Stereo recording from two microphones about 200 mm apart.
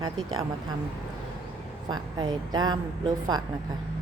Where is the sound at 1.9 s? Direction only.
20° right (ahead or behind).